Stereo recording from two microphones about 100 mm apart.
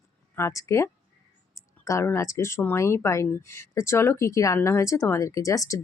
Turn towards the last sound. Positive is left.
turn(degrees=35)  # may be behind; listen again after turning